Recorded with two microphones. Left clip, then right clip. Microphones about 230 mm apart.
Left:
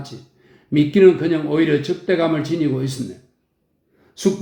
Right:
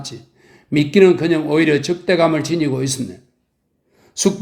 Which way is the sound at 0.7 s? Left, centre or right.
Right.